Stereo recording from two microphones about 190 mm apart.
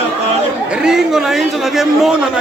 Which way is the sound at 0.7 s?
5° right (ahead or behind).